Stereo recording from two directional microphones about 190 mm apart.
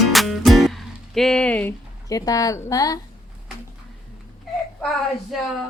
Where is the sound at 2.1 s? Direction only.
20° left (ahead or behind).